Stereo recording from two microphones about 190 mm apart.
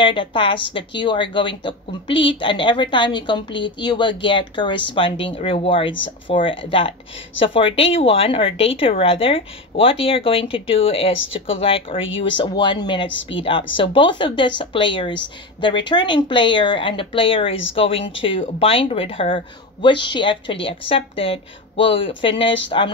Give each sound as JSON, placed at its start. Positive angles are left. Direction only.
{"t": 0.0, "sound": "speech", "side_deg": 25}